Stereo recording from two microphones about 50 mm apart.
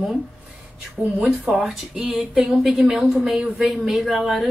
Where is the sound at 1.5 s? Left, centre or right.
Centre.